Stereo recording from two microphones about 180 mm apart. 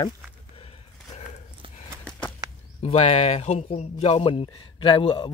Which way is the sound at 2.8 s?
35° left (ahead or behind).